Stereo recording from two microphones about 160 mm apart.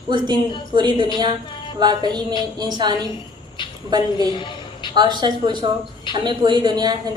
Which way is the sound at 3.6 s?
30° left (ahead or behind).